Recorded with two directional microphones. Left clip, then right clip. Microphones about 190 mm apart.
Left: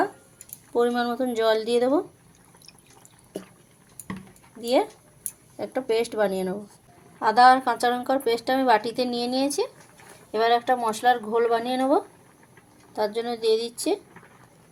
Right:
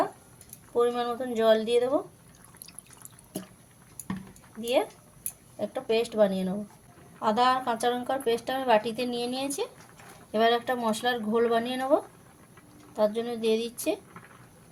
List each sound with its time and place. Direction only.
0.7 s speech: 35° left (ahead or behind)
5.5 s speech: 35° left (ahead or behind)
13.0 s speech: 35° left (ahead or behind)